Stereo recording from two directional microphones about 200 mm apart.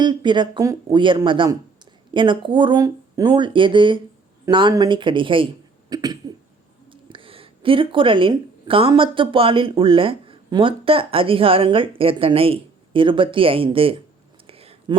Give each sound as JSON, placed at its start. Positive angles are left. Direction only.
{"t": 0.0, "sound": "speech", "side_deg": -20}
{"t": 5.9, "sound": "cough", "side_deg": -20}
{"t": 6.9, "sound": "speech", "side_deg": -25}
{"t": 14.4, "sound": "a sound", "side_deg": -30}